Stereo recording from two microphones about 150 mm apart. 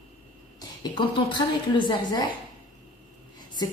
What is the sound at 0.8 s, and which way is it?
Speech, 30° left (ahead or behind).